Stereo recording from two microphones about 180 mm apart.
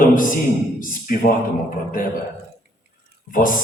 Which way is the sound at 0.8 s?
50° left (ahead or behind).